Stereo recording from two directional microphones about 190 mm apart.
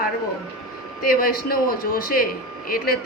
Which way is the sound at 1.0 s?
50° left (ahead or behind).